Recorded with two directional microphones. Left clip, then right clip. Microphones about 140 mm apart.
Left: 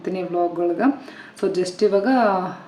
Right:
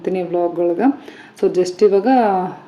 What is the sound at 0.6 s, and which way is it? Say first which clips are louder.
A woman's voice: right 4 dB; 20° right (ahead or behind).